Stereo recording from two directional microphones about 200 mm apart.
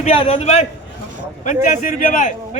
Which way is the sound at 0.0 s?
30° left (ahead or behind).